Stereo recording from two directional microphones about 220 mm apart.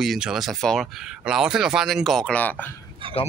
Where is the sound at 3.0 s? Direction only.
25° right (ahead or behind).